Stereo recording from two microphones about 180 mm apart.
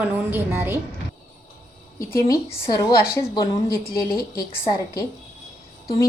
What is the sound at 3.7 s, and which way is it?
Speech, 55° left (ahead or behind).